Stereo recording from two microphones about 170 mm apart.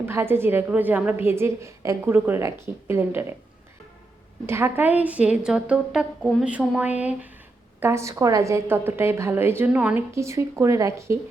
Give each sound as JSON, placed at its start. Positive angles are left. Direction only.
{"t": 0.0, "sound": "a woman's voice", "side_deg": -15}
{"t": 4.4, "sound": "a woman's voice", "side_deg": -15}